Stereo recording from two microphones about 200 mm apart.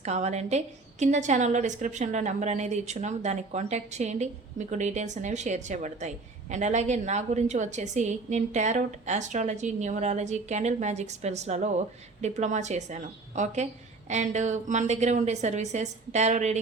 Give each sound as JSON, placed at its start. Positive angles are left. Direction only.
{"t": 0.0, "sound": "a woman's voice", "side_deg": -35}